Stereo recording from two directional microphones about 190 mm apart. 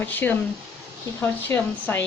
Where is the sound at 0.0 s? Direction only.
10° left (ahead or behind).